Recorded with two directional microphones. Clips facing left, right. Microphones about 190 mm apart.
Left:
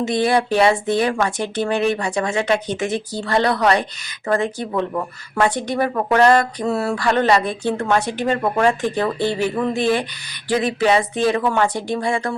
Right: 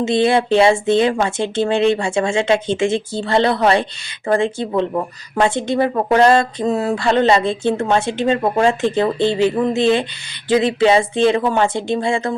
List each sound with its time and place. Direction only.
0.0 s a woman's voice: 25° right (ahead or behind)